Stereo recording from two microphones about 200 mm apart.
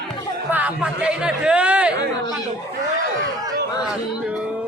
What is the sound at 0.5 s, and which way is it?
Speech, 5° right (ahead or behind).